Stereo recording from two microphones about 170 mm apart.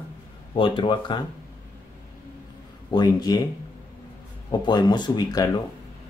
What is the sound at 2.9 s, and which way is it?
Speech, 25° left (ahead or behind).